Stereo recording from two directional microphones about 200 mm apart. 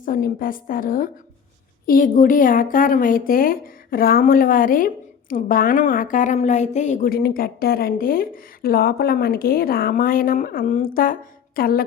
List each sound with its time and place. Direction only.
0.0 s a woman's voice: 45° left (ahead or behind)